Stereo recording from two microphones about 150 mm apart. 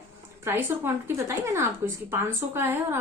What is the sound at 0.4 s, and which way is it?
Speech, 15° right (ahead or behind).